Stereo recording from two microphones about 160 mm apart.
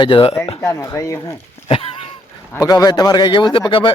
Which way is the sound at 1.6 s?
40° left (ahead or behind).